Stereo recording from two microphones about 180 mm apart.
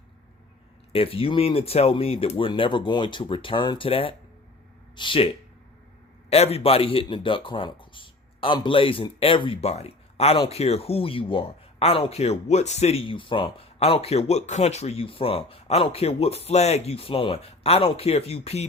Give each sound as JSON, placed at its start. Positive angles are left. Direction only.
{"t": 0.9, "sound": "speech", "side_deg": 30}
{"t": 6.3, "sound": "speech", "side_deg": 35}